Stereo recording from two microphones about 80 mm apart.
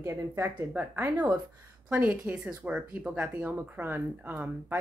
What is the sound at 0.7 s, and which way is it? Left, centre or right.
A woman's voice, right.